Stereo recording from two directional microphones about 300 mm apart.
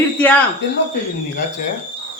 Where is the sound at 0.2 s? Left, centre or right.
Centre.